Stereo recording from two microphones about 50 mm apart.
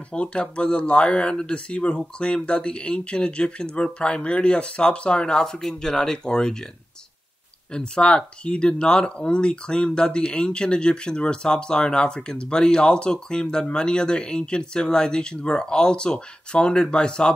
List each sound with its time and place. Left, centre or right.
0.1 s speech: left
7.9 s speech: centre